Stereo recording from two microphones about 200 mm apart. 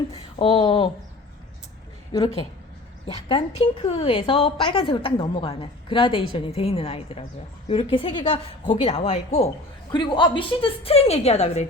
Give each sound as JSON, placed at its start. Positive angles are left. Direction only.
{"t": 0.1, "sound": "a woman's voice", "side_deg": 25}
{"t": 2.1, "sound": "a woman's voice", "side_deg": 20}